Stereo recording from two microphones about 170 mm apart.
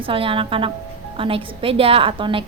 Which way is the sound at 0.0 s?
30° right (ahead or behind).